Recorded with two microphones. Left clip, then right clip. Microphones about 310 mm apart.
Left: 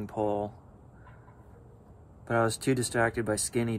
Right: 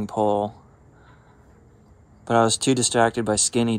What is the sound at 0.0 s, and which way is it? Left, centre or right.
Speech, centre.